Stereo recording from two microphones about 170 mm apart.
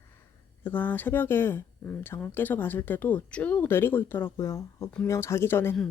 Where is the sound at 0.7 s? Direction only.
10° left (ahead or behind).